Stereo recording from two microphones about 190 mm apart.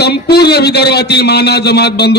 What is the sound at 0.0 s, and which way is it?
A man's voice, 60° left (ahead or behind).